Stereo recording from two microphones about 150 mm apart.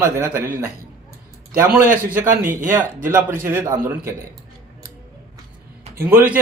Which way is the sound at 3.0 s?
15° right (ahead or behind).